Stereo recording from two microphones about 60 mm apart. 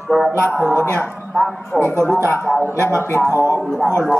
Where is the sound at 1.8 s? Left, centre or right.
Right.